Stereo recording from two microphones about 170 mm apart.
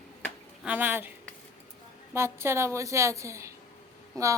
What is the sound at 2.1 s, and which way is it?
Speech, 15° right (ahead or behind).